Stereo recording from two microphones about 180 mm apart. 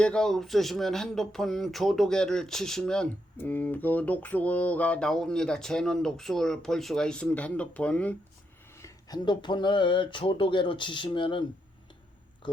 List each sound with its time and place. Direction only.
0.0 s speech: 5° left (ahead or behind)
8.7 s speech: 20° left (ahead or behind)